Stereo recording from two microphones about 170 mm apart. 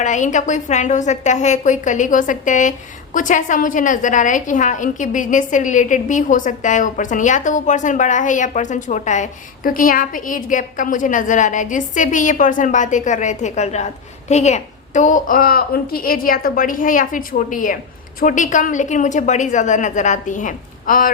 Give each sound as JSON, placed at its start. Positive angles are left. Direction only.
{"t": 0.0, "sound": "a woman's voice", "side_deg": 45}